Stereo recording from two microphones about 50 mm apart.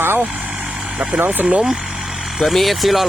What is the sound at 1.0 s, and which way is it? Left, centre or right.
Speech, right.